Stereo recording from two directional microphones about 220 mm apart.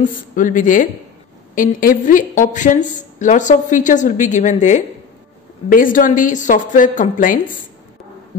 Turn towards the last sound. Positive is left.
turn(degrees=40)  # may be behind; listen again after turning